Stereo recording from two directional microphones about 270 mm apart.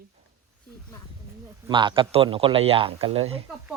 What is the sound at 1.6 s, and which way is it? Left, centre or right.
Speech, centre.